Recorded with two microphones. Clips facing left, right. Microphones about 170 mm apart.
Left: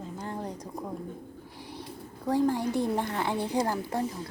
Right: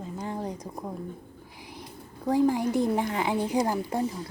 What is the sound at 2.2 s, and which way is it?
A woman's voice, 10° right (ahead or behind).